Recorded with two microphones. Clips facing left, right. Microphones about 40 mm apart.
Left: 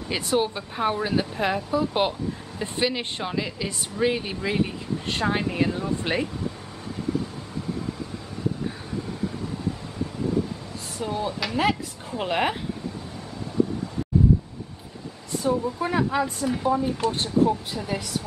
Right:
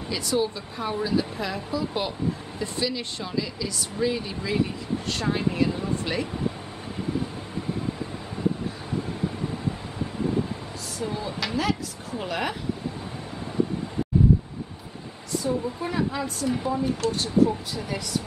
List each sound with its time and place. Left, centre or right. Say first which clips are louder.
0.1 s speech: left 2 dB; left
5.7 s speech: left 1 dB; centre
11.0 s speech: left 2 dB; left
15.3 s speech: left 2 dB; left